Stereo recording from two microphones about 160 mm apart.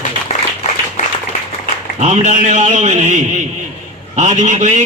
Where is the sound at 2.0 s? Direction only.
50° right (ahead or behind).